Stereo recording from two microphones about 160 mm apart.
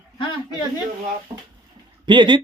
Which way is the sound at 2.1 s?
30° right (ahead or behind).